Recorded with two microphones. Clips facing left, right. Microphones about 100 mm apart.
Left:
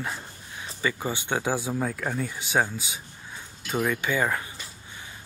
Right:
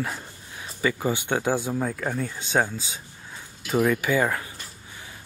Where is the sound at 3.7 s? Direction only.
5° right (ahead or behind).